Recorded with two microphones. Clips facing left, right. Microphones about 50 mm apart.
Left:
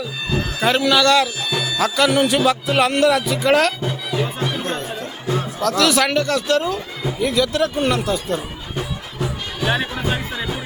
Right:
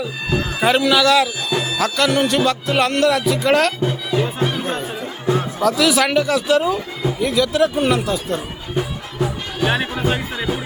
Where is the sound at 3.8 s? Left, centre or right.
Centre.